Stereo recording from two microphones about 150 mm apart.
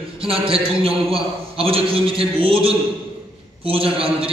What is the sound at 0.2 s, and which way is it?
A man's voice, 40° right (ahead or behind).